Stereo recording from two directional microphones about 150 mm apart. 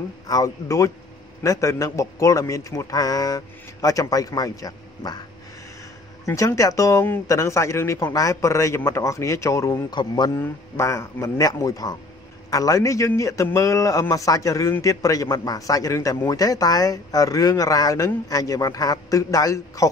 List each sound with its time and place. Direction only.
0.3 s a man's voice: 20° left (ahead or behind)
6.2 s a man's voice: 20° left (ahead or behind)
10.3 s a man's voice: 15° left (ahead or behind)